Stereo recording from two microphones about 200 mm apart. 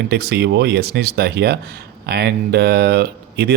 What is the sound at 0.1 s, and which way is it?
Speech, 55° right (ahead or behind).